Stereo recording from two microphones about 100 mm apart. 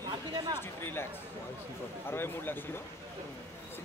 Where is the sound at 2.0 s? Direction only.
25° left (ahead or behind).